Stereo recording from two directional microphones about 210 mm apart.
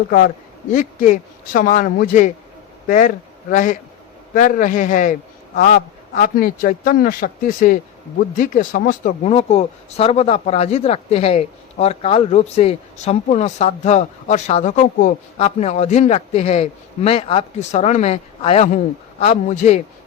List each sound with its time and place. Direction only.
0.7 s speech: 40° left (ahead or behind)